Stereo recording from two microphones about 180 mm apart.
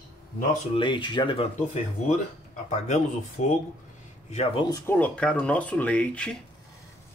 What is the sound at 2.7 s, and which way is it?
Speech, 40° left (ahead or behind).